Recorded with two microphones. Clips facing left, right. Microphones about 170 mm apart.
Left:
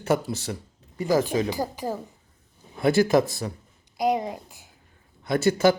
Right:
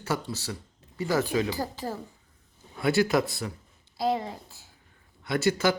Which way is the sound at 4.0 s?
15° left (ahead or behind).